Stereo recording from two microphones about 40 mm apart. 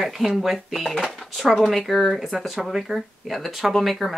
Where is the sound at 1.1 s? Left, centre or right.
Centre.